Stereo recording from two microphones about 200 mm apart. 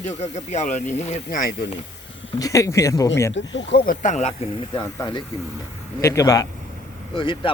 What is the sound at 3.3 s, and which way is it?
Speech, 65° left (ahead or behind).